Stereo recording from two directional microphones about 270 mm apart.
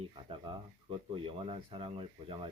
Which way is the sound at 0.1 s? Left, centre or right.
Centre.